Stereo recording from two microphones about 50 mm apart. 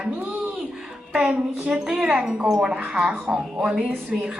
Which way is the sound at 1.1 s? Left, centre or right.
Right.